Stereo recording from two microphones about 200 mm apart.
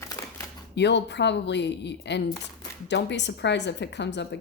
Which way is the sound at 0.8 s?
60° left (ahead or behind).